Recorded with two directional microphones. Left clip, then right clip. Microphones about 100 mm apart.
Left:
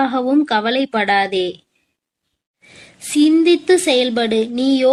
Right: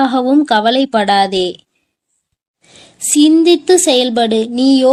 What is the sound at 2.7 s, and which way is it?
A woman's voice, 25° right (ahead or behind).